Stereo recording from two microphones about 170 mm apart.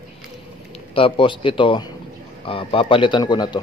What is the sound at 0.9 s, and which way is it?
Speech, 30° left (ahead or behind).